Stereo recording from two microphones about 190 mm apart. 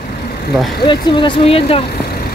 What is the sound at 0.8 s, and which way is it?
Speech, 25° left (ahead or behind).